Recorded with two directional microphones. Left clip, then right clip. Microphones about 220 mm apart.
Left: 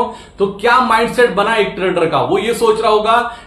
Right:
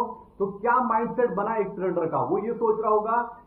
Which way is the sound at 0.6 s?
40° left (ahead or behind).